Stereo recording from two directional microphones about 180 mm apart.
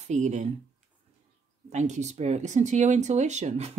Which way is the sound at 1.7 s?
40° right (ahead or behind).